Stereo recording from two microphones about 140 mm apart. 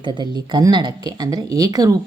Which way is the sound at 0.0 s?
35° right (ahead or behind).